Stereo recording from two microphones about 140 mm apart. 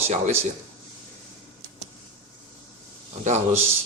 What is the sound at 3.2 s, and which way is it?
Speech, 55° right (ahead or behind).